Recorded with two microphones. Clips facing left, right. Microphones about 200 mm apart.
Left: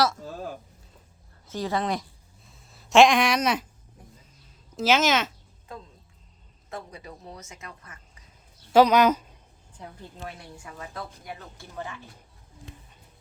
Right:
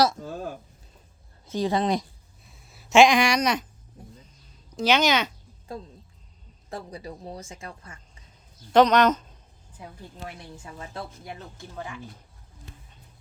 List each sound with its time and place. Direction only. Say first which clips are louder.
1.5 s speech: right 4 dB; 20° right (ahead or behind)
2.7 s speech: even; centre (ahead or behind)
4.7 s speech: even; centre (ahead or behind)
5.7 s speech: right 5 dB; 35° right (ahead or behind)
8.7 s speech: even; 5° left (ahead or behind)
9.7 s speech: even; 10° right (ahead or behind)
10.6 s speech: right 1 dB; 25° right (ahead or behind)